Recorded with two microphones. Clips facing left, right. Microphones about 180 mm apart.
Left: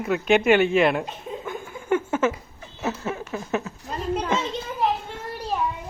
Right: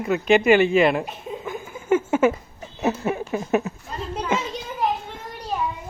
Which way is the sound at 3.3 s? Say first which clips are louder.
Right 5 dB; 15° right (ahead or behind).